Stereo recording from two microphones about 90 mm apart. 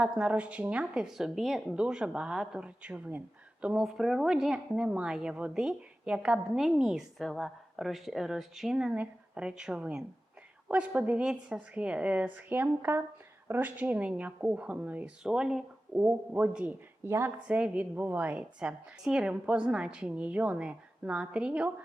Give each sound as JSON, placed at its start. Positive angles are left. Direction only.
{"t": 0.0, "sound": "speech", "side_deg": -10}
{"t": 16.0, "sound": "a man's voice", "side_deg": -20}
{"t": 17.0, "sound": "a man's voice", "side_deg": -25}
{"t": 17.4, "sound": "speech", "side_deg": -10}